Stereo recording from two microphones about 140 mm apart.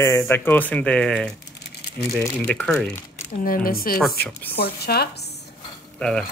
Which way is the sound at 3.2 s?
90° left.